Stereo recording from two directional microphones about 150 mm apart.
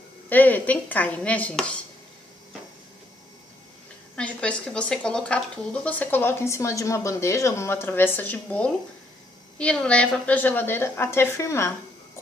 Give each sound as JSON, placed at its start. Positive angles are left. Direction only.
{"t": 0.3, "sound": "speech", "side_deg": 10}
{"t": 4.1, "sound": "speech", "side_deg": 5}